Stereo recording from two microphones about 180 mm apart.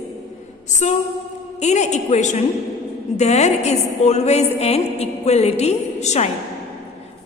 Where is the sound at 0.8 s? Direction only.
40° left (ahead or behind).